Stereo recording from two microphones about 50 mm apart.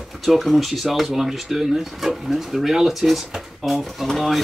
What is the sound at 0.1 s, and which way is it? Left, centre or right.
Speech, centre.